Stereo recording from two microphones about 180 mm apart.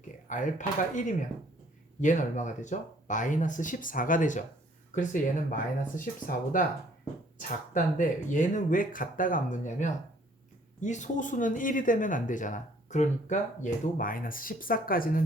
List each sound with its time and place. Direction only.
0.3 s speech: 45° left (ahead or behind)